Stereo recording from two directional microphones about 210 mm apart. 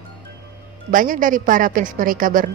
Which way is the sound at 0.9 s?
40° right (ahead or behind).